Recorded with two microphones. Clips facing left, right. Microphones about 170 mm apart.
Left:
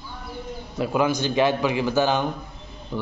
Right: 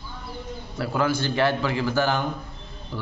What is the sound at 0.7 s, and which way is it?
A man's voice, 20° left (ahead or behind).